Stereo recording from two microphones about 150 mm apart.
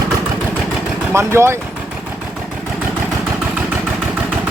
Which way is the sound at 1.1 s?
15° right (ahead or behind).